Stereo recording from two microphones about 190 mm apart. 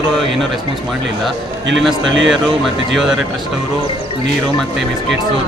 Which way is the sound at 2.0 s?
80° right.